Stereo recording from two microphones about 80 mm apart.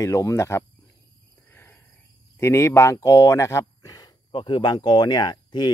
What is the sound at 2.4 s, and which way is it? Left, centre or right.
Speech, left.